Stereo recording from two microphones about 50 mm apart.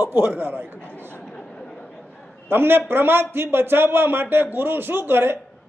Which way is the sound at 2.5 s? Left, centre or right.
Right.